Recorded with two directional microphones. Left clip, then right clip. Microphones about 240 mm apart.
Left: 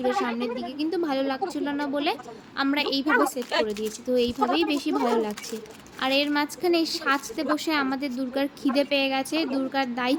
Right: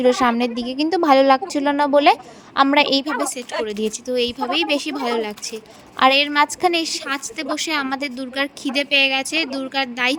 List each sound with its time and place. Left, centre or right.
0.0 s a woman's voice: right